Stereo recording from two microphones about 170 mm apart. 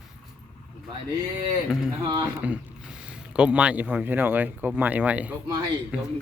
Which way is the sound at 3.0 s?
5° right (ahead or behind).